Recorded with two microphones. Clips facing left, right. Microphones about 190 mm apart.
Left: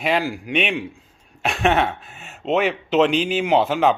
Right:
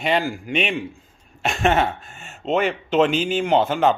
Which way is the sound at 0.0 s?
Centre (ahead or behind).